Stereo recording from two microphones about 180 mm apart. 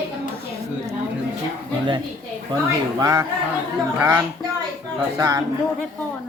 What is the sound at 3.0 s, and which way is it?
Speech, 20° right (ahead or behind).